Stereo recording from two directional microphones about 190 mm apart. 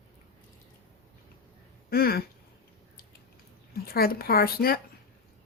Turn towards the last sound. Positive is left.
turn(degrees=55)  # may be behind; listen again after turning